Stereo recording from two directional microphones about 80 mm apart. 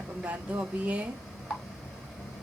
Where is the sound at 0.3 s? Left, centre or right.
Centre.